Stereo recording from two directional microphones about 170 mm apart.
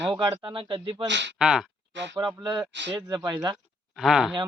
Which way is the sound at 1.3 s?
5° right (ahead or behind).